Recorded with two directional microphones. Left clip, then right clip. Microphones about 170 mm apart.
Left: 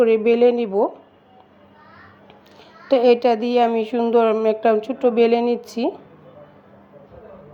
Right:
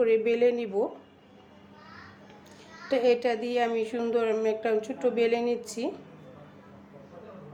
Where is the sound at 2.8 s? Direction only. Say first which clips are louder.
Left 9 dB; 30° left (ahead or behind).